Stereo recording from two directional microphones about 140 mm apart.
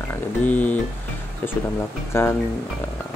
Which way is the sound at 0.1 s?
10° left (ahead or behind).